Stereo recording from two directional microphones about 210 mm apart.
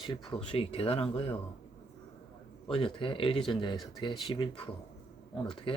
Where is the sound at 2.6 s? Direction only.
25° left (ahead or behind).